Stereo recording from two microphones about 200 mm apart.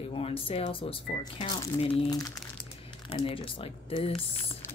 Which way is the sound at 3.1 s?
25° left (ahead or behind).